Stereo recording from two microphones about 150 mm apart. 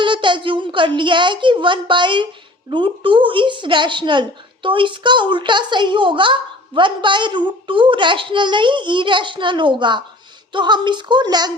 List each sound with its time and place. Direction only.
0.0 s a woman's voice: 35° right (ahead or behind)